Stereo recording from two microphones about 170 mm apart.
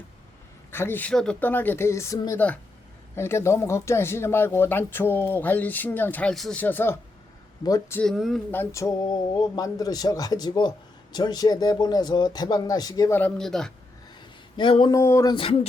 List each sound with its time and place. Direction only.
0.7 s speech: 15° left (ahead or behind)
7.9 s speech: centre (ahead or behind)
8.4 s speech: 15° left (ahead or behind)
14.5 s speech: 30° left (ahead or behind)
14.9 s speech: 15° left (ahead or behind)